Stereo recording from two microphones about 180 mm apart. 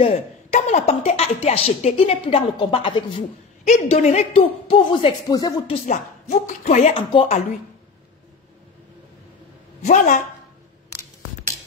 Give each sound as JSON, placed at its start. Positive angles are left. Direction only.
{"t": 0.0, "sound": "a woman's voice", "side_deg": 35}
{"t": 5.9, "sound": "a woman's voice", "side_deg": 40}
{"t": 9.8, "sound": "a woman's voice", "side_deg": 40}